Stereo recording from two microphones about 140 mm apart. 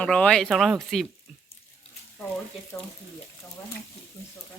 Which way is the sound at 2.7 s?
20° left (ahead or behind).